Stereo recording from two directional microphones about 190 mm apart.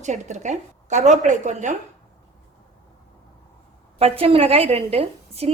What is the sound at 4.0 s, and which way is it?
A woman's voice, 30° right (ahead or behind).